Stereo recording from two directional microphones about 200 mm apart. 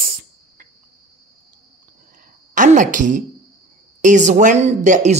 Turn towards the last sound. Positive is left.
turn(degrees=-35)  # may be behind; listen again after turning